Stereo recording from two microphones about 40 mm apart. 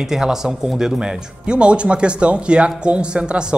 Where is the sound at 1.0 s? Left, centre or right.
Right.